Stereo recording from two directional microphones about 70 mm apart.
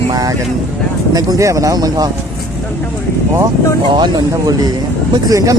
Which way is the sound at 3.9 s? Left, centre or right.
Right.